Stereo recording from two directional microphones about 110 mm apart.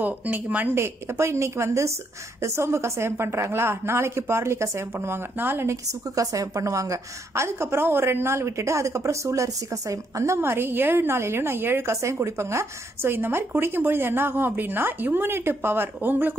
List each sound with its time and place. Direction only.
0.0 s a woman's voice: 15° right (ahead or behind)